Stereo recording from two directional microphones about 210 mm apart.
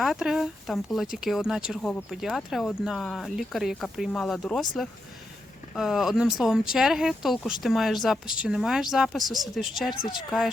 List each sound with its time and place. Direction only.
0.0 s speech: centre (ahead or behind)
5.7 s speech: centre (ahead or behind)
9.9 s speech: 45° left (ahead or behind)
10.2 s speech: centre (ahead or behind)